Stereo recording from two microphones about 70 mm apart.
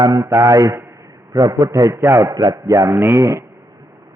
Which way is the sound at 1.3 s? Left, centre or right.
Right.